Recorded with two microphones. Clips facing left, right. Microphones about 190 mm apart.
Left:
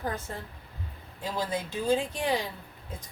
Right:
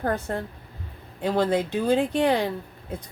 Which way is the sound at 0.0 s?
60° right (ahead or behind).